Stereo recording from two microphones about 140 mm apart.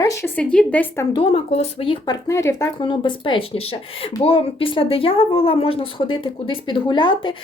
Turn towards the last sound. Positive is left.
turn(degrees=35)  # may be behind; listen again after turning